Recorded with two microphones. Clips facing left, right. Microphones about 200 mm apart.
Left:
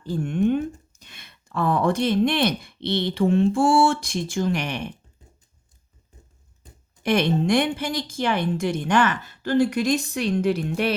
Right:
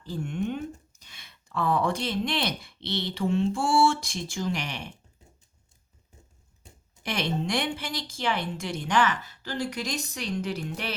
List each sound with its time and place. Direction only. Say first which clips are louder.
0.0 s speech: left 8 dB; 55° left (ahead or behind)
7.0 s a woman's voice: left 9 dB; 55° left (ahead or behind)